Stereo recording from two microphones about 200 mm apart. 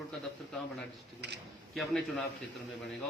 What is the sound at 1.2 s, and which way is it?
Speech, 55° right (ahead or behind).